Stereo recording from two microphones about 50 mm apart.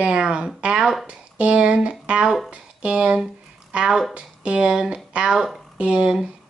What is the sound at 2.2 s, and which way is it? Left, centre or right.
Speech, centre.